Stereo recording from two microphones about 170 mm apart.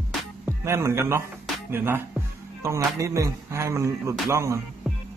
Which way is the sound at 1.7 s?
15° right (ahead or behind).